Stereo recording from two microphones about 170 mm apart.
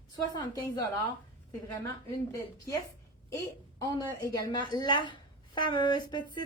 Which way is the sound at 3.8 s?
20° left (ahead or behind).